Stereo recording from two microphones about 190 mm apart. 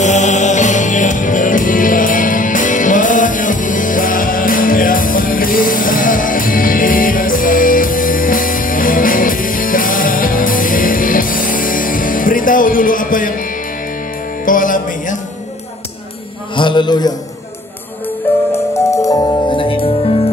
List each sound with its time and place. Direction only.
0.0 s music: 40° left (ahead or behind)
16.5 s a sound: 25° left (ahead or behind)
18.5 s music: 15° left (ahead or behind)